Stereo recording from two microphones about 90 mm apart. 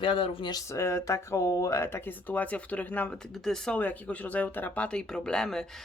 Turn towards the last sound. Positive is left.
turn(degrees=5)  # may be behind; listen again after turning